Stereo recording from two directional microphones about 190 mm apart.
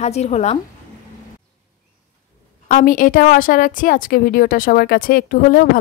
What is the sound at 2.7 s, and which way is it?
A woman's voice, 45° left (ahead or behind).